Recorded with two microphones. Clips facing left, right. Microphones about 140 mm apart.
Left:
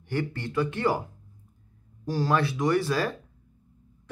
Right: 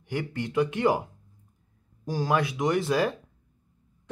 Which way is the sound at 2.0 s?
15° right (ahead or behind).